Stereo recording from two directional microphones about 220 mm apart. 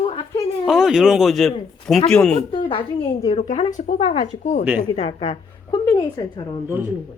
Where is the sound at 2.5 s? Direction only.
25° left (ahead or behind).